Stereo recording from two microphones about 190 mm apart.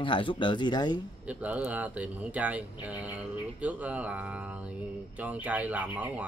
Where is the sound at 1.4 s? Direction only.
10° right (ahead or behind).